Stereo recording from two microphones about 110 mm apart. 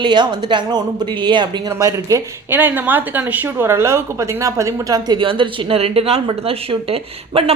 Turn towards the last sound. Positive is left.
turn(degrees=-65)  # may be behind; listen again after turning